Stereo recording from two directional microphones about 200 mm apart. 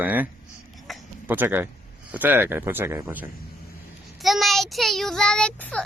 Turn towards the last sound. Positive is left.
turn(degrees=5)  # may be behind; listen again after turning